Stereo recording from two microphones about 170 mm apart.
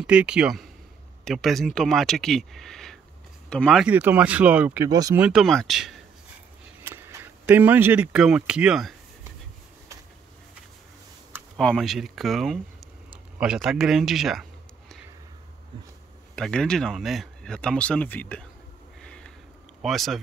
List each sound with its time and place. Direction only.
0.0 s speech: 5° right (ahead or behind)
3.8 s speech: 10° right (ahead or behind)
4.8 s speech: 20° right (ahead or behind)
5.1 s speech: 5° right (ahead or behind)
6.8 s speech: 15° right (ahead or behind)
11.5 s speech: centre (ahead or behind)
16.3 s speech: 5° left (ahead or behind)
18.9 s a sound: 5° left (ahead or behind)
19.8 s speech: centre (ahead or behind)